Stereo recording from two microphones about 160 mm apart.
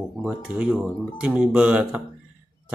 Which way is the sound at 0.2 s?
5° right (ahead or behind).